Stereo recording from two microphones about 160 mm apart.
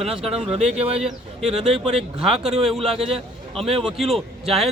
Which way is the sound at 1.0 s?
5° right (ahead or behind).